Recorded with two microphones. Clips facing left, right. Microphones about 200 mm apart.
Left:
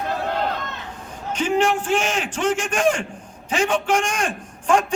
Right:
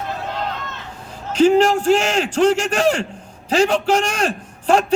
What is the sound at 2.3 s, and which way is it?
A man's voice, 35° right (ahead or behind).